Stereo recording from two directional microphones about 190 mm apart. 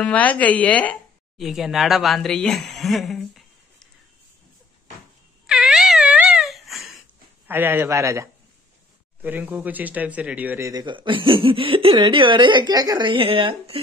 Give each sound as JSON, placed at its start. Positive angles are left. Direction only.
{"t": 0.0, "sound": "speech", "side_deg": 10}
{"t": 5.5, "sound": "wail", "side_deg": -5}
{"t": 7.4, "sound": "speech", "side_deg": -10}
{"t": 10.7, "sound": "speech", "side_deg": -20}